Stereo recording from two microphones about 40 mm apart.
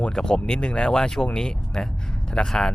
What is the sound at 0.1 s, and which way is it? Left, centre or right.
Speech, centre.